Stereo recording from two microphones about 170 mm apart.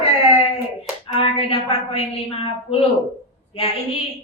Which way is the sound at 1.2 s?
35° left (ahead or behind).